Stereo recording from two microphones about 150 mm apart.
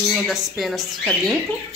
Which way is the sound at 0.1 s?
Centre (ahead or behind).